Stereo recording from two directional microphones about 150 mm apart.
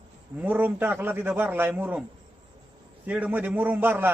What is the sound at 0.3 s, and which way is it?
A man's voice, 10° right (ahead or behind).